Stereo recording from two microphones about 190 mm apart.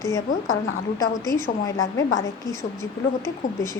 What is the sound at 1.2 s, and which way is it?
Speech, 15° left (ahead or behind).